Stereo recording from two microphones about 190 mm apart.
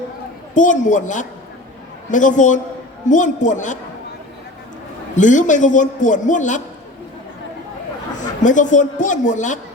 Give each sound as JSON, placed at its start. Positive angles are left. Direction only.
{"t": 0.5, "sound": "a man's voice", "side_deg": 40}
{"t": 5.1, "sound": "a man's voice", "side_deg": 40}
{"t": 8.4, "sound": "a man's voice", "side_deg": 40}